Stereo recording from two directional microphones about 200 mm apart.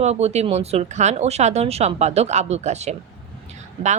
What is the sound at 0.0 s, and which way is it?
Speech, 35° right (ahead or behind).